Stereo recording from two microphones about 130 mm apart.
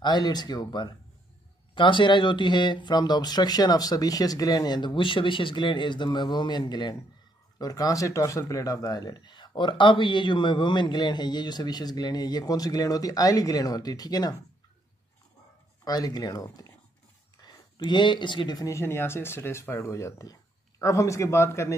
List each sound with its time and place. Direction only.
0.0 s speech: 35° left (ahead or behind)
15.8 s speech: 30° left (ahead or behind)